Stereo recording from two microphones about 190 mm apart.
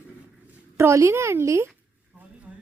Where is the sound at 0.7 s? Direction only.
15° right (ahead or behind).